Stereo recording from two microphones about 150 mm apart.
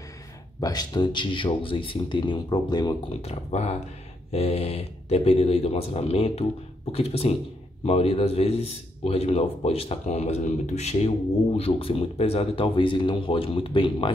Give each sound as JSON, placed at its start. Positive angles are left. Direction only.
{"t": 0.6, "sound": "a man's voice", "side_deg": 25}
{"t": 3.1, "sound": "a man's voice", "side_deg": 45}